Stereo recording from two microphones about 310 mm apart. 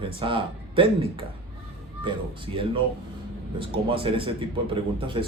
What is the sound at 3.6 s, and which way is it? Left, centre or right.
Speech, centre.